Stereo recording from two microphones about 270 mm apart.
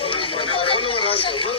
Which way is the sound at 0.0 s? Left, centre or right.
Centre.